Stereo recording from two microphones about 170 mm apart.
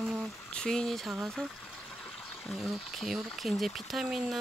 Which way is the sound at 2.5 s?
Centre (ahead or behind).